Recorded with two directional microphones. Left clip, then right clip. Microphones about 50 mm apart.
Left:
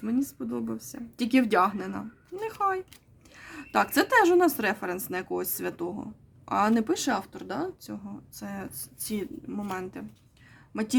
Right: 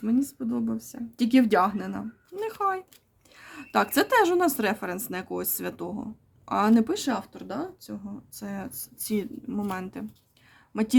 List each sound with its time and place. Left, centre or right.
0.0 s speech: centre
2.6 s a woman's voice: right
6.9 s speech: centre
7.8 s speech: centre
8.3 s speech: right